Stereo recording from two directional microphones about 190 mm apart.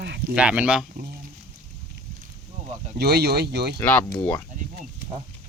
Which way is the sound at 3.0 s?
55° right (ahead or behind).